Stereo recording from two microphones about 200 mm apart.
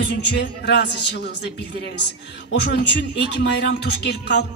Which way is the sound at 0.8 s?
60° left (ahead or behind).